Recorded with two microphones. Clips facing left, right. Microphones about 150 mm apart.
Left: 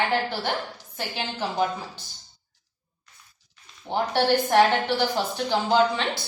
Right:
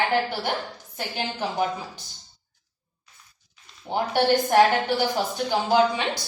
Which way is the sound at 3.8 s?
10° right (ahead or behind).